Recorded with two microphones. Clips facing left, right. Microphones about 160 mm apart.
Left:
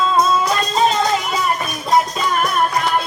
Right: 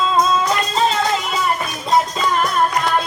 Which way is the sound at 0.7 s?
15° left (ahead or behind).